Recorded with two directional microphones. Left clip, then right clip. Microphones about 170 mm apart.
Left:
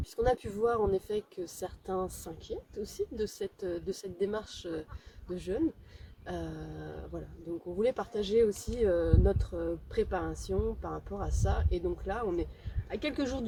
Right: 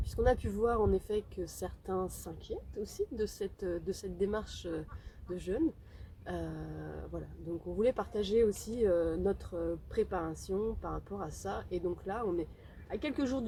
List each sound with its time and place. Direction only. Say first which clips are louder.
0.0 s speech: left 1 dB; 5° right (ahead or behind)